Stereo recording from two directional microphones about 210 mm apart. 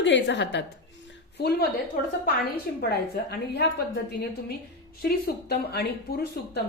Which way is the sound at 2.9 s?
50° left (ahead or behind).